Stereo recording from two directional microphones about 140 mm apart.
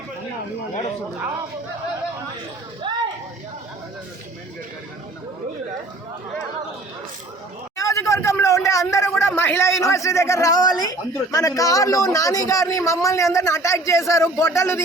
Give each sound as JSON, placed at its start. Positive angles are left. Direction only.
{"t": 7.8, "sound": "speech", "side_deg": 25}